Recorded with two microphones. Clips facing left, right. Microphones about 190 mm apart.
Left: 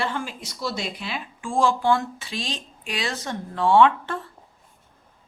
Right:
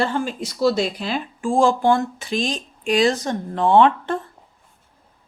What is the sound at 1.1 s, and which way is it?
Speech, 40° right (ahead or behind).